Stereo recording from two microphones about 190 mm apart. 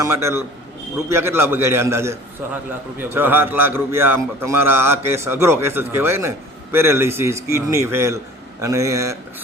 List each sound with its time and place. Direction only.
0.0 s a man's voice: 15° right (ahead or behind)